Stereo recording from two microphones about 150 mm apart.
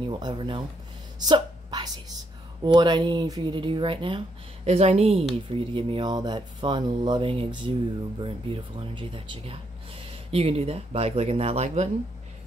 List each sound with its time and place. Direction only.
0.1 s a woman's voice: 30° right (ahead or behind); by 11.9 s 45° right (ahead or behind)